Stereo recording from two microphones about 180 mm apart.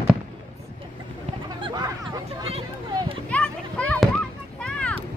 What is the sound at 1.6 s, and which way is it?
Hubbub, 25° right (ahead or behind).